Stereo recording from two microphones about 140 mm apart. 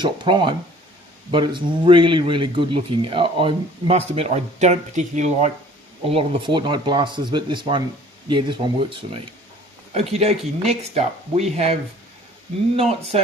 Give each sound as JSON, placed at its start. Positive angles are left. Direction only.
{"t": 0.0, "sound": "speech", "side_deg": -35}
{"t": 6.1, "sound": "speech", "side_deg": -40}
{"t": 9.9, "sound": "speech", "side_deg": -50}
{"t": 13.1, "sound": "speech", "side_deg": -50}